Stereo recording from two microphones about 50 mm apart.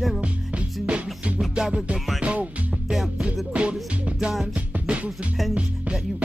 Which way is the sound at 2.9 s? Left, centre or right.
Centre.